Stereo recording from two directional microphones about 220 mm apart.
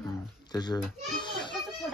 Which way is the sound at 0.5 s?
20° left (ahead or behind).